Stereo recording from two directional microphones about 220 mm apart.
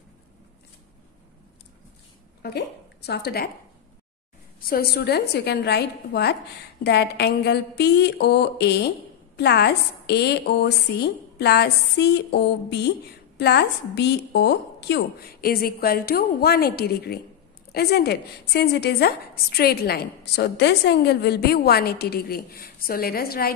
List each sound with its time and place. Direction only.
2.4 s a woman's voice: 45° left (ahead or behind)
4.6 s a woman's voice: 45° left (ahead or behind)